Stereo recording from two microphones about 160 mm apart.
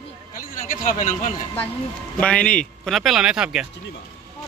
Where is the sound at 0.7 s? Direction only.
55° left (ahead or behind).